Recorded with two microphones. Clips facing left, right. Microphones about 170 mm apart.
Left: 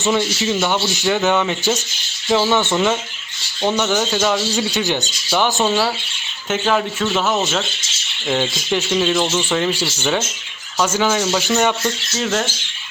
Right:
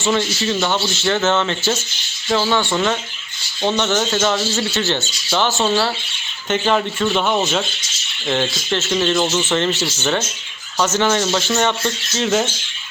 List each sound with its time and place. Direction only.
0.1 s speech: 10° left (ahead or behind)
2.7 s speech: 10° left (ahead or behind)
4.5 s speech: 15° left (ahead or behind)
9.2 s speech: 5° right (ahead or behind)
9.5 s speech: 10° left (ahead or behind)